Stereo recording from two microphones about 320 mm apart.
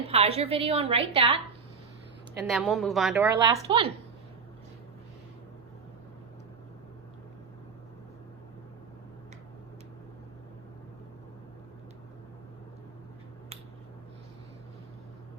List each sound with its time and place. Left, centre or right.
0.1 s a woman's voice: centre
2.4 s a woman's voice: centre
3.3 s a woman's voice: centre